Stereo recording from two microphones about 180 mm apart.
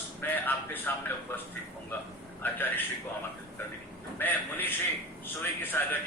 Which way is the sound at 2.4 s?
10° left (ahead or behind).